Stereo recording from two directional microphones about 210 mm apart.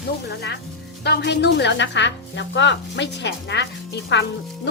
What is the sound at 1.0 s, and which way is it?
Speech, 55° left (ahead or behind).